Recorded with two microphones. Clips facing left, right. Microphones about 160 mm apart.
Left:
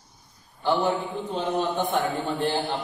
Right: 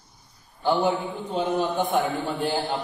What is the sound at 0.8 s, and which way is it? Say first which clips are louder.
A man's voice: right 1 dB; 10° right (ahead or behind).